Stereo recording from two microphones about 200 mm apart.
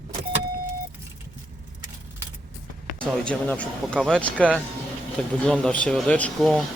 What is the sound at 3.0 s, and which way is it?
Speech, 5° left (ahead or behind).